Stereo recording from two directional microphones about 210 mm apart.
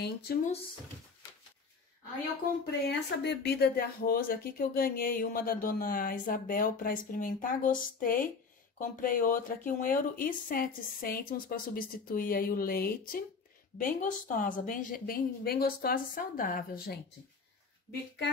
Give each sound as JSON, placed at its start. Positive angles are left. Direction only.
{"t": 0.0, "sound": "speech", "side_deg": 50}
{"t": 2.9, "sound": "speech", "side_deg": 55}